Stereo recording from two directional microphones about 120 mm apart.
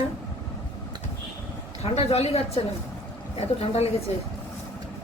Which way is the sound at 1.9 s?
60° left (ahead or behind).